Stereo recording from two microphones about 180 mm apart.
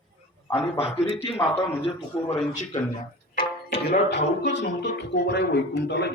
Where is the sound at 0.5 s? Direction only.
35° left (ahead or behind).